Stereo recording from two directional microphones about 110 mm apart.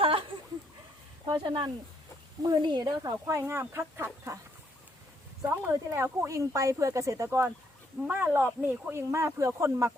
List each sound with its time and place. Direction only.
0.0 s a sound: 55° right (ahead or behind)
1.4 s speech: 50° right (ahead or behind)
2.4 s speech: 40° right (ahead or behind)
5.5 s speech: 25° right (ahead or behind)